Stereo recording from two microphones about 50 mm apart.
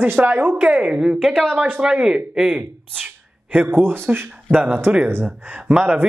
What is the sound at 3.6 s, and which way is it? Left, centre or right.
Speech, right.